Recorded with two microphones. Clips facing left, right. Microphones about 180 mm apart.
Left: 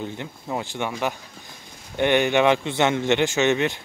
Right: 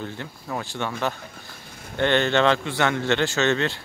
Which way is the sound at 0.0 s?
20° left (ahead or behind).